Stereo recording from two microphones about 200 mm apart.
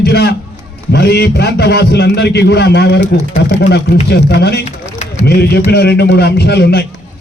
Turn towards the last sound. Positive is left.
turn(degrees=55)  # may be behind; listen again after turning